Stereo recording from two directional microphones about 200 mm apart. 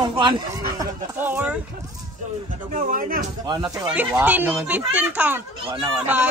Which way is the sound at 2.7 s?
40° right (ahead or behind).